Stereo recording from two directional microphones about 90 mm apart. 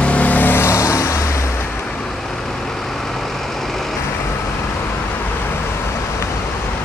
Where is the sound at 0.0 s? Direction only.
15° left (ahead or behind).